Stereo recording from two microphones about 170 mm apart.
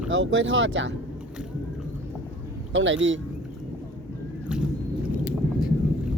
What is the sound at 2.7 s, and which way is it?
Speech, 90° right.